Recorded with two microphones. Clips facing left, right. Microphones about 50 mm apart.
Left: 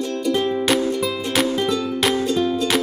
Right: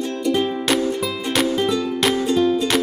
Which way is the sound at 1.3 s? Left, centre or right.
Centre.